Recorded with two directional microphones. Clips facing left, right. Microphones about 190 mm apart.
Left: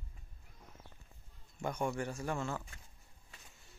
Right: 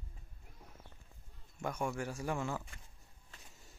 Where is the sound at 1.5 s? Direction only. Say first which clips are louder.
Left 1 dB; 5° right (ahead or behind).